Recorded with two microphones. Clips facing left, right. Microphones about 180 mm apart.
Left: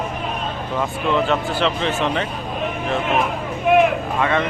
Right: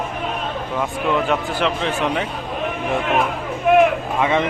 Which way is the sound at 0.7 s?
5° right (ahead or behind).